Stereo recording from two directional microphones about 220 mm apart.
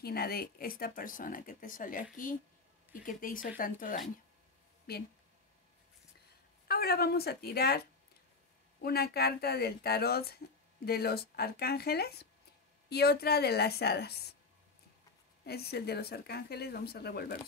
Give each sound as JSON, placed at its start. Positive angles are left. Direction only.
{"t": 0.0, "sound": "speech", "side_deg": 45}
{"t": 6.7, "sound": "speech", "side_deg": 45}
{"t": 15.4, "sound": "speech", "side_deg": 45}